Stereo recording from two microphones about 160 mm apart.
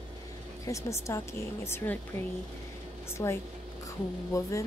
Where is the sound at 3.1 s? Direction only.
15° left (ahead or behind).